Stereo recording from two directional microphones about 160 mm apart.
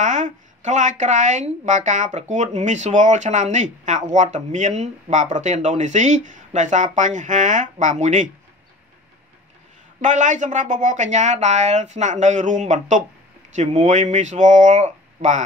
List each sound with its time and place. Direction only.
0.0 s a woman's voice: 50° right (ahead or behind)
10.0 s a woman's voice: 50° right (ahead or behind)